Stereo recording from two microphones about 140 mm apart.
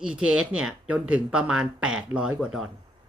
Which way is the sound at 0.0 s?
5° right (ahead or behind).